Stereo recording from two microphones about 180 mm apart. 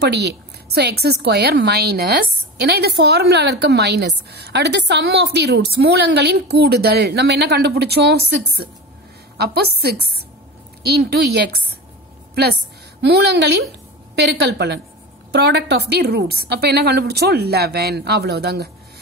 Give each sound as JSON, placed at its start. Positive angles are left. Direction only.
{"t": 0.0, "sound": "a woman's voice", "side_deg": -70}
{"t": 13.0, "sound": "a woman's voice", "side_deg": -65}